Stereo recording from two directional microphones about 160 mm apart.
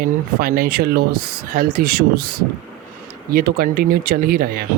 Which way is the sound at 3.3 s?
65° right (ahead or behind).